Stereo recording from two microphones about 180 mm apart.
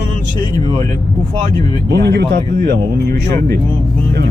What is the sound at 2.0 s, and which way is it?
Speech, 65° right (ahead or behind).